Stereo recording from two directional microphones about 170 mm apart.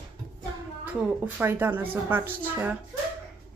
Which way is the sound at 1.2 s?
15° right (ahead or behind).